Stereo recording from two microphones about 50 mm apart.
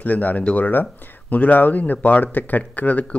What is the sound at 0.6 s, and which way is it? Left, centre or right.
Speech, left.